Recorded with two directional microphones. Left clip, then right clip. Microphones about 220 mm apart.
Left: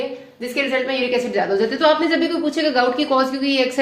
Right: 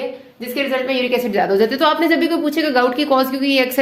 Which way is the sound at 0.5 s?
45° right (ahead or behind).